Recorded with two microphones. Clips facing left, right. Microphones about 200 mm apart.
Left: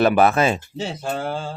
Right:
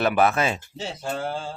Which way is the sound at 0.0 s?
35° left (ahead or behind).